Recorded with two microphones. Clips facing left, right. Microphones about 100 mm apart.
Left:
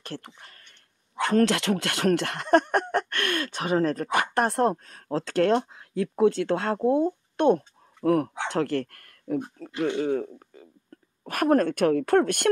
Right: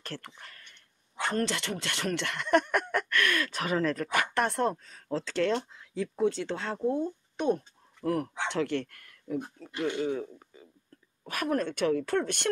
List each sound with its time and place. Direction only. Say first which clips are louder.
0.2 s speech: even; 35° left (ahead or behind)
1.2 s speech: left 8 dB; 60° left (ahead or behind); by 4.7 s 35° left (ahead or behind)
4.8 s speech: left 4 dB; 60° left (ahead or behind)
6.4 s speech: left 7 dB; 55° left (ahead or behind); by 8.3 s 85° left
8.5 s speech: left 4 dB; 40° left (ahead or behind)